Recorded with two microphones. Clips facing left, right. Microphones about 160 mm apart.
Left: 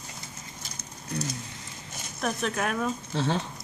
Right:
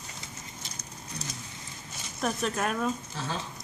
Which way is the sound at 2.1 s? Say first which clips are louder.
Left 1 dB; centre (ahead or behind).